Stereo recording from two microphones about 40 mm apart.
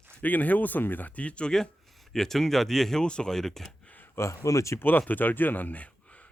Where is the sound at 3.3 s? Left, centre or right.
Centre.